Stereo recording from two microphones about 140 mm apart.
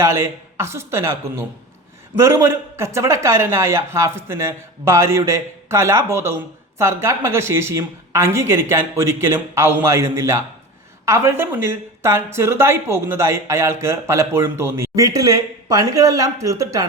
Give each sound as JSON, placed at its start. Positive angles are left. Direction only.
{"t": 0.0, "sound": "speech", "side_deg": -20}